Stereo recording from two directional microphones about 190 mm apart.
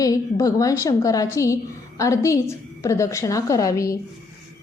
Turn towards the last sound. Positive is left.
turn(degrees=15)  # may be behind; listen again after turning